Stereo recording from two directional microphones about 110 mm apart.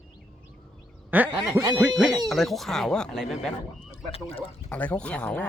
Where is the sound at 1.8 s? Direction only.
10° right (ahead or behind).